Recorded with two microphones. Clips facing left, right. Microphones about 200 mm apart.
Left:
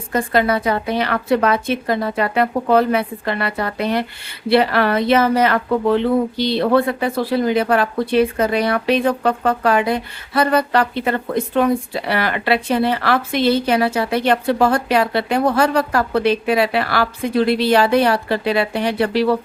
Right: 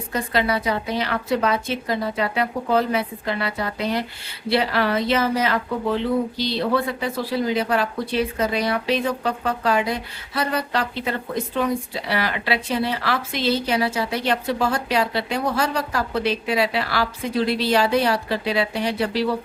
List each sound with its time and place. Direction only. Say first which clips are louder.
0.1 s speech: left 5 dB; 50° left (ahead or behind)